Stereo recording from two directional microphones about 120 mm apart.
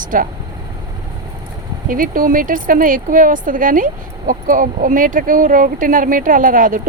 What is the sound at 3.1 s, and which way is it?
A woman's voice, 90° right.